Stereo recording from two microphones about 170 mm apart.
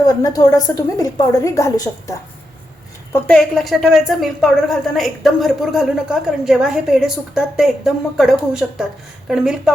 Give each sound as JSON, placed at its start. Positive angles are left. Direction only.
{"t": 0.0, "sound": "a woman's voice", "side_deg": 20}
{"t": 3.1, "sound": "speech", "side_deg": 5}